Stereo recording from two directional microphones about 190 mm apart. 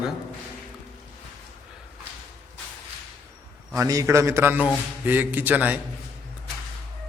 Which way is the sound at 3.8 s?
15° right (ahead or behind).